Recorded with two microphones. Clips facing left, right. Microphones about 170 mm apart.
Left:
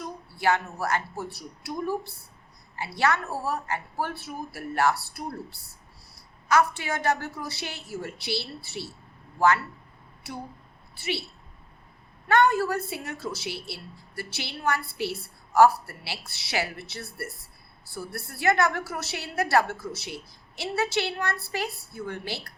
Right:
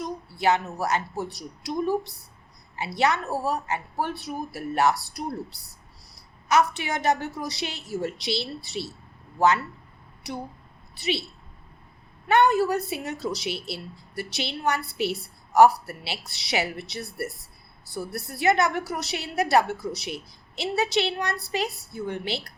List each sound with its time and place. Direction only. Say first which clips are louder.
0.0 s a woman's voice: right 2 dB; 20° right (ahead or behind)
10.9 s a woman's voice: right 3 dB; 20° right (ahead or behind)
12.3 s a woman's voice: right 2 dB; 15° right (ahead or behind)